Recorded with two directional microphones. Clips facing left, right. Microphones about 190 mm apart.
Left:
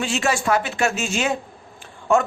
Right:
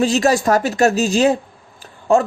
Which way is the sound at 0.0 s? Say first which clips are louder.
Right 7 dB; 35° right (ahead or behind).